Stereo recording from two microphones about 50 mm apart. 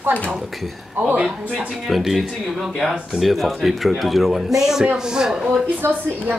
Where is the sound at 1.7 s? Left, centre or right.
Centre.